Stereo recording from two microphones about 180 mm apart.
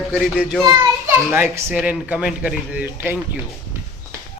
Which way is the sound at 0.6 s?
20° right (ahead or behind).